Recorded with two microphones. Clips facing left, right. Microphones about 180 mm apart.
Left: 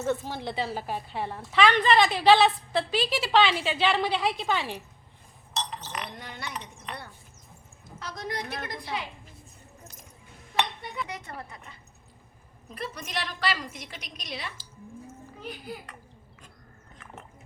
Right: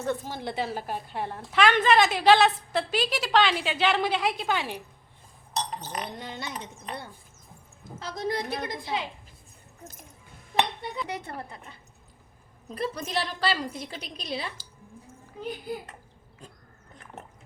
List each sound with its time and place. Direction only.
0.0 s a woman's voice: centre (ahead or behind)
5.7 s chink: 45° right (ahead or behind)
6.1 s a woman's voice: 25° right (ahead or behind)
7.9 s a woman's voice: 30° right (ahead or behind)
10.6 s a sound: 30° right (ahead or behind)
12.6 s a woman's voice: 30° right (ahead or behind)